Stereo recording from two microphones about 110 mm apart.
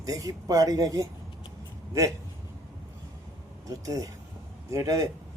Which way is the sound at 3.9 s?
30° right (ahead or behind).